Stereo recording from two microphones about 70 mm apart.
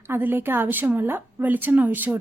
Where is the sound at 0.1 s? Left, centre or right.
Right.